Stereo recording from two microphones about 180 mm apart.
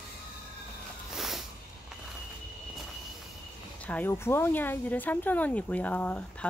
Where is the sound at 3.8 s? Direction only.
10° left (ahead or behind).